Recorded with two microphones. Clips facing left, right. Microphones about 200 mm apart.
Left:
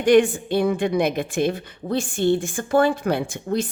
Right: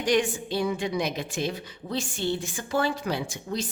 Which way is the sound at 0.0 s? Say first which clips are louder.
Left 9 dB; 55° left (ahead or behind).